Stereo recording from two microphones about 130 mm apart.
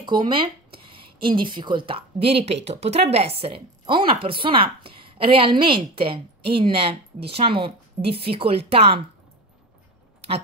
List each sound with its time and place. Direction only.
0.0 s speech: 35° right (ahead or behind)